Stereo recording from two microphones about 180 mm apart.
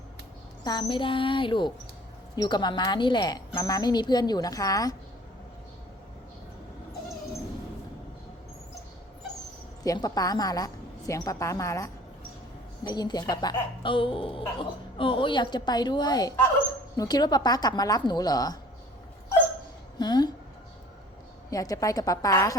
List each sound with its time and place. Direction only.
0.6 s a woman's voice: 25° left (ahead or behind)
9.8 s a woman's voice: 20° left (ahead or behind)
20.0 s a woman's voice: 25° left (ahead or behind)
21.5 s a woman's voice: 20° left (ahead or behind)